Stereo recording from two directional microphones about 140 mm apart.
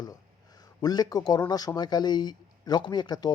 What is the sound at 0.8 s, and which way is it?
Speech, 30° left (ahead or behind).